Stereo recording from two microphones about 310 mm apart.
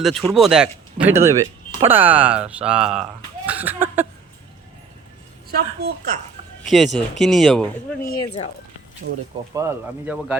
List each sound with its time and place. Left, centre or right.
0.0 s speech: centre
5.5 s a woman's voice: right
6.7 s speech: centre
9.0 s speech: right
9.6 s speech: centre